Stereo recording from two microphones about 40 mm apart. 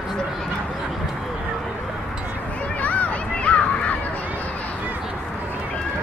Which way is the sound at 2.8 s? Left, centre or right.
Left.